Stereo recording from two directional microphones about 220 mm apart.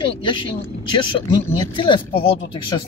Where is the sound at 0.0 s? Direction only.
20° left (ahead or behind).